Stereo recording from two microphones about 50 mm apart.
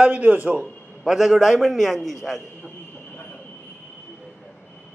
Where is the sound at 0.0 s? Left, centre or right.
Right.